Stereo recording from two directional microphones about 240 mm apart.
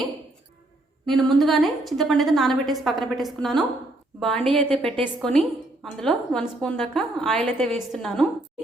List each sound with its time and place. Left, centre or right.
1.0 s a woman's voice: centre